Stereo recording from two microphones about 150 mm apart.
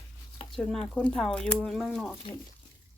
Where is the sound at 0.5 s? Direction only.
5° left (ahead or behind).